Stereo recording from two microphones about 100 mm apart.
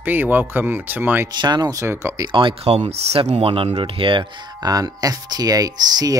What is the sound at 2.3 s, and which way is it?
Speech, 60° right (ahead or behind).